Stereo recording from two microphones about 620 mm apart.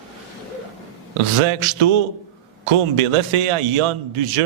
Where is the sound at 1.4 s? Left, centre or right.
Right.